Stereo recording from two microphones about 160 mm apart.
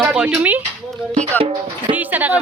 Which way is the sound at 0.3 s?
10° right (ahead or behind).